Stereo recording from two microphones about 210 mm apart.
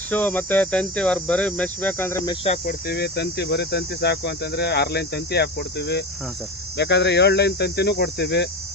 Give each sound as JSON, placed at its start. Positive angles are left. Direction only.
{"t": 0.1, "sound": "speech", "side_deg": 10}
{"t": 2.3, "sound": "speech", "side_deg": 30}
{"t": 2.6, "sound": "cricket", "side_deg": 50}